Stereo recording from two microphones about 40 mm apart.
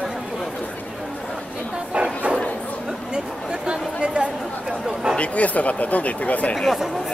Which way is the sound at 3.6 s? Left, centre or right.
Right.